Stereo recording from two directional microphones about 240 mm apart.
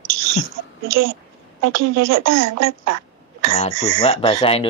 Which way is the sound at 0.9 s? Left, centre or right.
Right.